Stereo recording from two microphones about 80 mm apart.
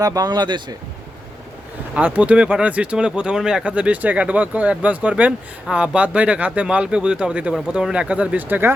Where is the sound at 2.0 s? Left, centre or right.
Centre.